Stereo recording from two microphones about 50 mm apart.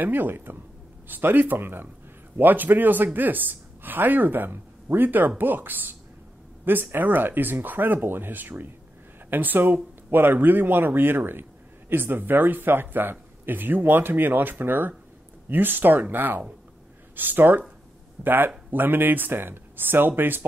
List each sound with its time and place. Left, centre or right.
0.0 s speech: right